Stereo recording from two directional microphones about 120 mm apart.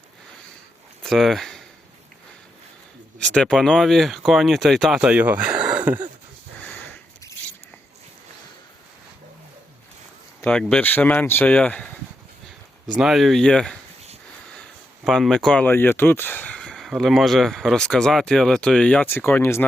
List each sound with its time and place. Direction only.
1.0 s speech: centre (ahead or behind)
3.2 s speech: 10° left (ahead or behind)
4.9 s speech: 10° right (ahead or behind)
6.6 s sniff: 15° left (ahead or behind)
10.5 s speech: 5° left (ahead or behind)
12.9 s speech: centre (ahead or behind)
15.0 s speech: centre (ahead or behind)
15.6 s speech: 15° left (ahead or behind)
16.7 s speech: centre (ahead or behind); by 19.6 s 20° left (ahead or behind)